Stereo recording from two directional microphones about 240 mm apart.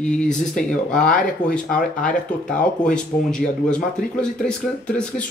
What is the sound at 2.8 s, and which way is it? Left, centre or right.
Speech, centre.